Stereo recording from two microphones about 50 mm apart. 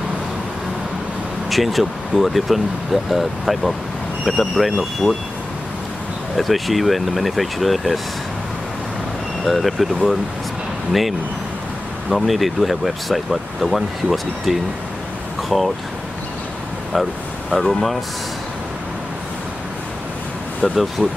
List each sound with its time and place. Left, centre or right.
1.5 s speech: centre
5.0 s speech: centre
6.3 s speech: centre
9.5 s speech: centre
10.9 s speech: centre
16.9 s speech: centre
20.6 s speech: centre